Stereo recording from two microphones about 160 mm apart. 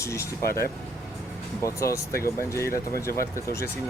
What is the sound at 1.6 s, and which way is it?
Speech, 20° left (ahead or behind).